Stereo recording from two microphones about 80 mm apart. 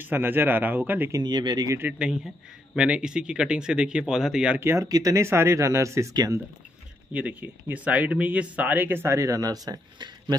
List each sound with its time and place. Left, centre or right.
0.0 s speech: right
1.2 s speech: right
2.7 s speech: centre
4.6 s speech: right
4.8 s speech: right
7.2 s speech: centre; by 10.3 s right